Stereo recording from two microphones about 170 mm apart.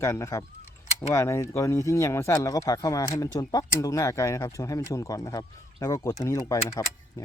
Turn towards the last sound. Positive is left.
turn(degrees=20)  # may be behind; listen again after turning